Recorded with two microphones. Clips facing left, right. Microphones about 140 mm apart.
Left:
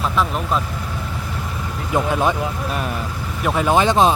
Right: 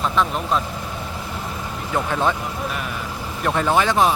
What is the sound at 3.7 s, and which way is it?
Speech, 20° left (ahead or behind).